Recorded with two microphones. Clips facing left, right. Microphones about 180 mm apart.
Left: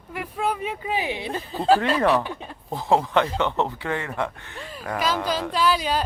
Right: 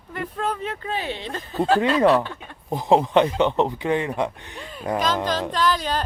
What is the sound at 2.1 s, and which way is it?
Speech, 15° left (ahead or behind).